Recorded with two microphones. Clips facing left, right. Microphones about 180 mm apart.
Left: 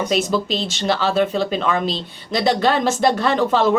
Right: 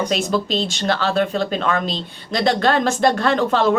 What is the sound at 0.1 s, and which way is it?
Speech, centre (ahead or behind).